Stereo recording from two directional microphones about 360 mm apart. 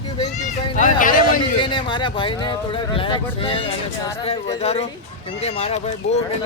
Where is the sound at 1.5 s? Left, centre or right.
Centre.